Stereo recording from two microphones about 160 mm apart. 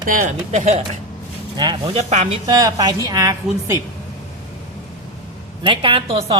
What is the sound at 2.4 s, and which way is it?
A woman's voice, 25° right (ahead or behind).